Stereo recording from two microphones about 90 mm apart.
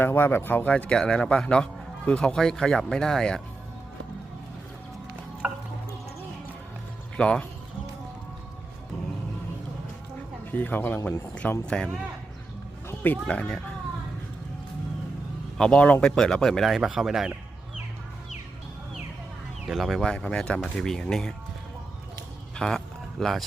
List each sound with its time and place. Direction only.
0.0 s a man's voice: 25° left (ahead or behind); by 3.4 s 5° left (ahead or behind)
5.4 s music: 20° right (ahead or behind)
7.2 s a man's voice: 10° left (ahead or behind)
10.5 s speech: 20° left (ahead or behind)
11.6 s a man's voice: 10° left (ahead or behind)
13.0 s a man's voice: 15° left (ahead or behind)
15.5 s speech: 10° left (ahead or behind)
19.6 s a man's voice: centre (ahead or behind)
22.5 s a sound: 5° left (ahead or behind)